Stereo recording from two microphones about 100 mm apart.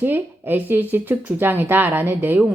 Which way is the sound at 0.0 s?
20° right (ahead or behind).